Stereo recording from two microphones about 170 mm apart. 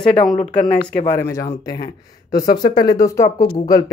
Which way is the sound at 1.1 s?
15° left (ahead or behind).